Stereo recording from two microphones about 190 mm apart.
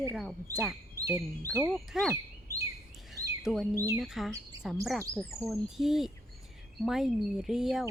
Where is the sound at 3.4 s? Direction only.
Centre (ahead or behind).